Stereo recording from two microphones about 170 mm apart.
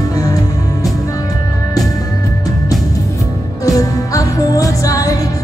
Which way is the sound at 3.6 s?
20° left (ahead or behind).